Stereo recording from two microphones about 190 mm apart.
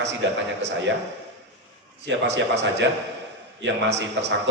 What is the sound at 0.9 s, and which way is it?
Speech, 75° right (ahead or behind).